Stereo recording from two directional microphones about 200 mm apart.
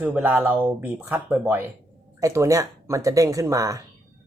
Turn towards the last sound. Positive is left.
turn(degrees=-15)  # may be behind; listen again after turning